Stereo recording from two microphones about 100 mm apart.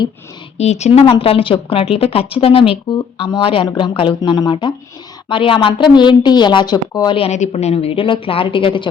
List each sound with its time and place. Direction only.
0.5 s speech: 90° left; by 3.2 s 65° left (ahead or behind)
3.2 s a woman's voice: 55° left (ahead or behind)
4.2 s a woman's voice: 45° left (ahead or behind)
5.3 s a woman's voice: 60° left (ahead or behind); by 7.2 s 45° left (ahead or behind)
7.2 s a woman's voice: 90° left; by 8.9 s 55° left (ahead or behind)